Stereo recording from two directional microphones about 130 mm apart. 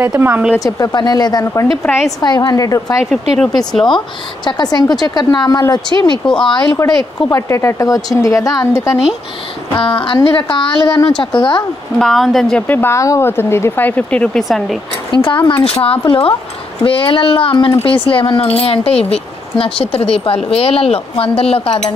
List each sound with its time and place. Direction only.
0.0 s speech: 15° right (ahead or behind)
0.6 s speech: 25° left (ahead or behind)
1.9 s speech: centre (ahead or behind)
2.1 s speech: 30° left (ahead or behind)
3.1 s speech: 5° left (ahead or behind)
4.5 s speech: 35° left (ahead or behind)
6.2 s speech: 5° left (ahead or behind)
7.2 s speech: 20° left (ahead or behind)
9.8 s speech: 40° left (ahead or behind)
12.0 s speech: centre (ahead or behind)
12.6 s speech: 15° left (ahead or behind)
15.1 s a woman's voice: 40° left (ahead or behind)